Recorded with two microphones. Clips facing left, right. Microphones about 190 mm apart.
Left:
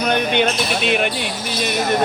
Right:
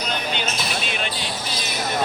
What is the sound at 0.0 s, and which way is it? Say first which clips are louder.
Speech: left 9 dB; 60° left (ahead or behind).